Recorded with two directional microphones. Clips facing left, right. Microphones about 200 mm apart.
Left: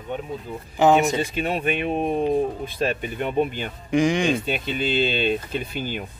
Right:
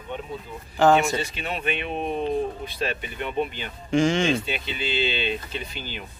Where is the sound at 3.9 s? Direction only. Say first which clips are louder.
Left 1 dB; 15° left (ahead or behind).